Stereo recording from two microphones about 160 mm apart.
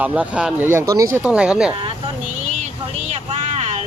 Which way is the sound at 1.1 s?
5° right (ahead or behind).